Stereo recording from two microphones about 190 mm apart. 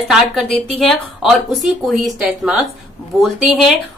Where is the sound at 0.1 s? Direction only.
Centre (ahead or behind).